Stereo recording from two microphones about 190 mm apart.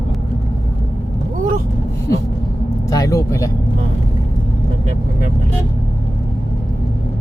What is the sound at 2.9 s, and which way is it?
Speech, 20° left (ahead or behind).